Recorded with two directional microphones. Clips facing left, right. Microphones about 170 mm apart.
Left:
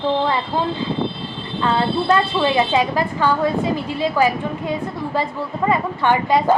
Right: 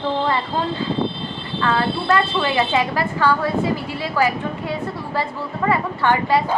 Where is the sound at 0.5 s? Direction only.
15° left (ahead or behind).